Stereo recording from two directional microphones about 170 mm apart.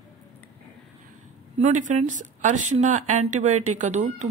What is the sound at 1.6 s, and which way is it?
A woman's voice, 45° right (ahead or behind).